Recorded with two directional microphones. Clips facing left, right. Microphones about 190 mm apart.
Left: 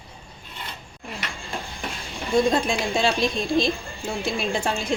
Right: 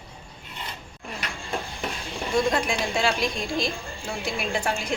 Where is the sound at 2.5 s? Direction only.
25° left (ahead or behind).